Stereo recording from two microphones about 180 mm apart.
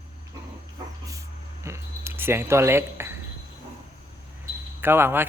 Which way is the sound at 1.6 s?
15° right (ahead or behind).